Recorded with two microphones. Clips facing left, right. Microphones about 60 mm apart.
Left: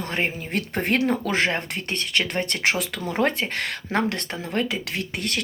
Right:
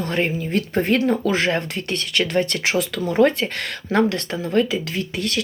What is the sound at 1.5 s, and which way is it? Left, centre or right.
Speech, left.